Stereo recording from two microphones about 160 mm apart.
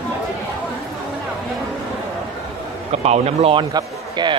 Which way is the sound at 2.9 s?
40° right (ahead or behind).